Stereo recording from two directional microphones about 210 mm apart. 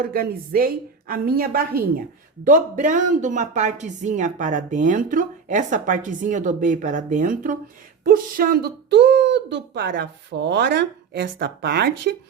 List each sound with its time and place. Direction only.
0.0 s a woman's voice: 45° right (ahead or behind)